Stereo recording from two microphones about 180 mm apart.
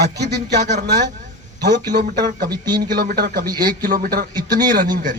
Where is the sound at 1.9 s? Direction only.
50° right (ahead or behind).